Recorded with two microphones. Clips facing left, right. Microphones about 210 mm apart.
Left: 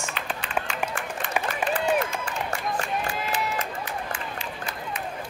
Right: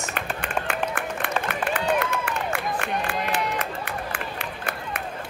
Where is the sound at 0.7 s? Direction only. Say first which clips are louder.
Right 3 dB; 55° right (ahead or behind).